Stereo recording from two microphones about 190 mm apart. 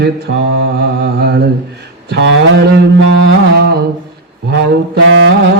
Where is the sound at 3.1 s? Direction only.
65° right (ahead or behind).